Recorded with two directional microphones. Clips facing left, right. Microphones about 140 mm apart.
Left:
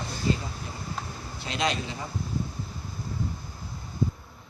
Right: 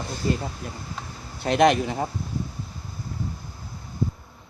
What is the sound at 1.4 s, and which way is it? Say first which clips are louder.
Speech: right 11 dB; 55° right (ahead or behind).